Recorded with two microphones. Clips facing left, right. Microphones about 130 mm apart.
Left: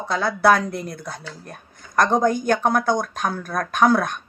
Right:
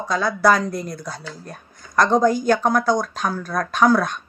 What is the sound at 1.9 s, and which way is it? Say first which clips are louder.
Speech: right 2 dB; 50° left (ahead or behind).